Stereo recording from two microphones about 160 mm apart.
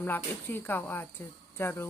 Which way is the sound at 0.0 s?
15° left (ahead or behind).